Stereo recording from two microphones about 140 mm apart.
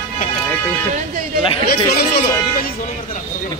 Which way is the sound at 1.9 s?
90° left.